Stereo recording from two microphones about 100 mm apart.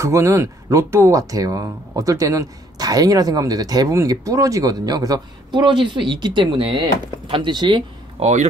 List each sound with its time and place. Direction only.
0.0 s speech: 30° right (ahead or behind); by 7.8 s 50° right (ahead or behind)
8.2 s speech: 80° right